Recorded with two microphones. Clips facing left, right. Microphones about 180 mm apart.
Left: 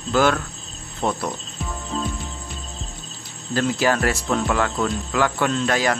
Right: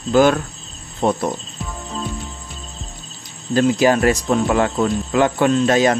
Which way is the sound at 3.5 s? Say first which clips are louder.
Right 6 dB; 20° right (ahead or behind).